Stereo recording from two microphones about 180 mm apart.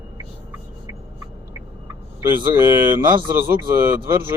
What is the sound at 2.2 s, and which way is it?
Speech, 10° right (ahead or behind).